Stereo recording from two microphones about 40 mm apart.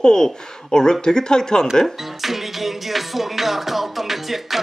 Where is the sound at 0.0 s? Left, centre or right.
Centre.